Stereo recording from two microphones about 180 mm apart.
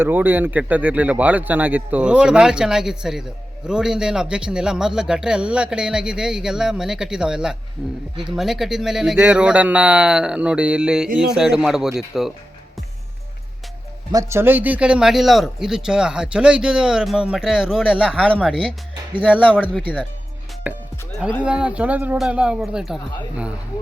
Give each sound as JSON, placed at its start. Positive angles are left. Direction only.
{"t": 0.0, "sound": "speech", "side_deg": -10}
{"t": 14.1, "sound": "speech", "side_deg": -15}
{"t": 21.4, "sound": "speech", "side_deg": -5}